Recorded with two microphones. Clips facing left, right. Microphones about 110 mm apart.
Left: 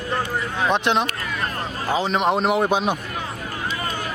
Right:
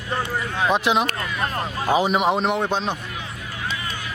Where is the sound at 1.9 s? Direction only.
15° right (ahead or behind).